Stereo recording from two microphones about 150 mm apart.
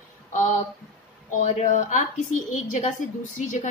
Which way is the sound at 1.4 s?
60° left (ahead or behind).